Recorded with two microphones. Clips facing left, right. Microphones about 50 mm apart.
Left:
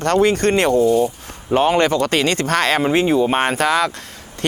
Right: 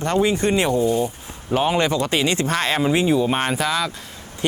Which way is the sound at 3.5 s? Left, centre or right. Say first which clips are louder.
Left 5 dB; left.